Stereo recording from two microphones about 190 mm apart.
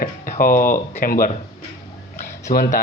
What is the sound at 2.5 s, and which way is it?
Speech, 50° left (ahead or behind).